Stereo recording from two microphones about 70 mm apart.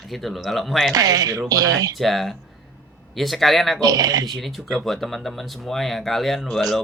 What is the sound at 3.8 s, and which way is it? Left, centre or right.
Speech, right.